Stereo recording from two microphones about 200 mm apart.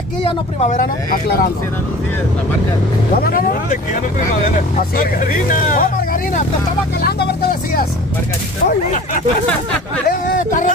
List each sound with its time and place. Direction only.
0.2 s speech: 35° left (ahead or behind)
3.2 s speech: 50° left (ahead or behind)
4.7 s speech: 45° left (ahead or behind)
7.0 s speech: 55° left (ahead or behind)
8.6 s speech: 40° left (ahead or behind)
10.0 s a sound: 40° left (ahead or behind)